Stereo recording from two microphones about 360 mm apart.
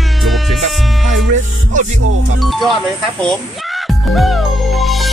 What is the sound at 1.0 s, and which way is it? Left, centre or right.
Music, centre.